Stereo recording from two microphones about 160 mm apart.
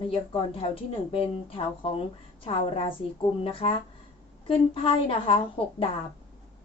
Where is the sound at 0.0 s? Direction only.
35° left (ahead or behind).